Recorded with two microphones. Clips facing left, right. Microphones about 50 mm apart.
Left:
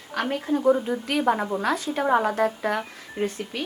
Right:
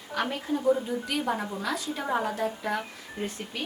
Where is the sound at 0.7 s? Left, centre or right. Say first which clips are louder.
Left 4 dB; left.